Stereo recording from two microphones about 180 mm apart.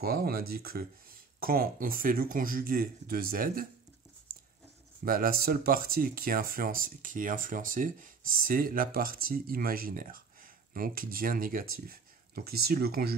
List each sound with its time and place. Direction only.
0.0 s speech: 55° right (ahead or behind)
5.0 s speech: 50° right (ahead or behind)